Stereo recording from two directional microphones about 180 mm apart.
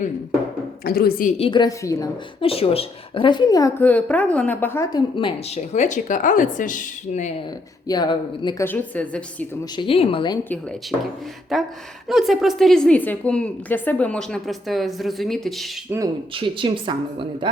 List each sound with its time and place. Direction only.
0.9 s a woman's voice: 55° left (ahead or behind)
1.4 s a woman's voice: 25° left (ahead or behind)
2.4 s a woman's voice: 30° left (ahead or behind)
5.5 s a woman's voice: 40° left (ahead or behind)
7.9 s a woman's voice: 25° left (ahead or behind)
8.6 s a woman's voice: 10° left (ahead or behind)
9.7 s a woman's voice: 30° left (ahead or behind)
11.5 s a woman's voice: centre (ahead or behind)
15.9 s speech: 10° right (ahead or behind)
16.3 s a woman's voice: 30° right (ahead or behind)